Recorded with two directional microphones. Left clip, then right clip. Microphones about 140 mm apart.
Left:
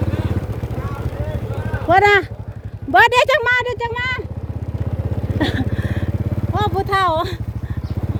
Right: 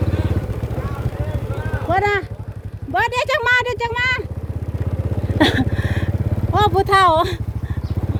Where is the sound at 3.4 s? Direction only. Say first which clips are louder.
Right 1 dB; 20° left (ahead or behind).